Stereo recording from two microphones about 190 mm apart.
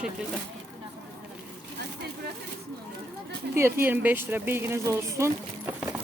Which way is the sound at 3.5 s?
10° right (ahead or behind).